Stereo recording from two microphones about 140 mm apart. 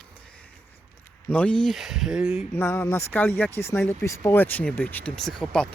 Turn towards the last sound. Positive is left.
turn(degrees=5)  # may be behind; listen again after turning